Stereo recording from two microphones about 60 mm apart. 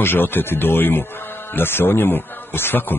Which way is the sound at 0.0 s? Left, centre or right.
Left.